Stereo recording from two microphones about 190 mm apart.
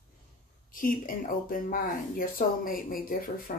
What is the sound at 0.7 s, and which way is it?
Speech, 45° left (ahead or behind).